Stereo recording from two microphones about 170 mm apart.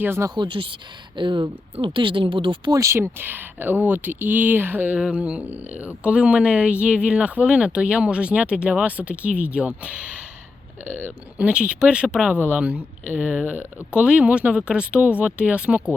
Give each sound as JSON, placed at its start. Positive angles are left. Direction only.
{"t": 0.0, "sound": "speech", "side_deg": -15}